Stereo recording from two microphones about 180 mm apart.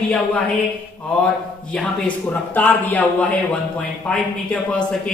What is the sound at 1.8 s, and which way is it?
Speech, 5° left (ahead or behind).